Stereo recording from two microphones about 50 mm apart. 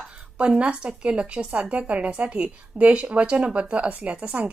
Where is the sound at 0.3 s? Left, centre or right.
Right.